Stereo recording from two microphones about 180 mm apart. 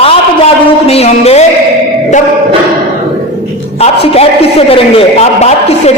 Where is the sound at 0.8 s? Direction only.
35° left (ahead or behind).